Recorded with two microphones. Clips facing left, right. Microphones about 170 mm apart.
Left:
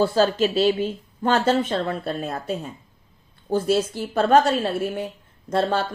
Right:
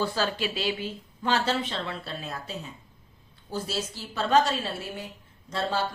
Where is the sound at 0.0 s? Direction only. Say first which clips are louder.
Left 9 dB; 40° left (ahead or behind).